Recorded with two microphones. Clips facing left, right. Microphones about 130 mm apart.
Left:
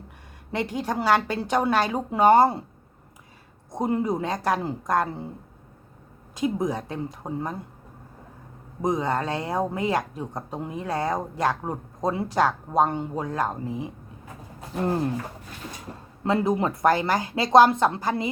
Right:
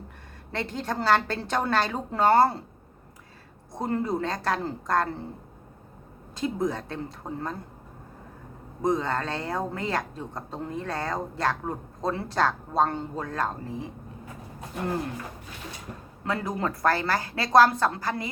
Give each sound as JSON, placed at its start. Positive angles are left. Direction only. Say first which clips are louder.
{"t": 0.5, "sound": "a woman's voice", "louder": "left 3 dB", "side_deg": 10}
{"t": 3.7, "sound": "a woman's voice", "louder": "left 3 dB", "side_deg": 15}
{"t": 6.3, "sound": "a woman's voice", "louder": "left 2 dB", "side_deg": 15}
{"t": 8.8, "sound": "a woman's voice", "louder": "left 1 dB", "side_deg": 15}
{"t": 16.2, "sound": "speech", "louder": "left 6 dB", "side_deg": 25}